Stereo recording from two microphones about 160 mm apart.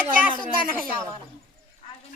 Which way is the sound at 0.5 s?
60° right (ahead or behind).